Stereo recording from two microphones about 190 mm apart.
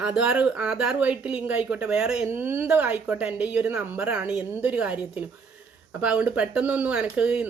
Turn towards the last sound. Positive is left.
turn(degrees=-5)  # may be behind; listen again after turning